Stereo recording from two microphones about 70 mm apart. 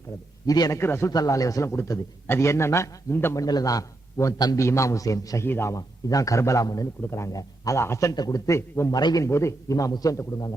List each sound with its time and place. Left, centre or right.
0.4 s a man's voice: left
0.7 s a man's voice: left
1.1 s a man's voice: left
2.2 s a man's voice: left
3.3 s a man's voice: left
4.5 s a man's voice: left
5.4 s a man's voice: left
5.7 s a man's voice: left
7.8 s a man's voice: left
8.1 s speech: left
8.4 s a man's voice: left
8.9 s speech: left
9.2 s a man's voice: left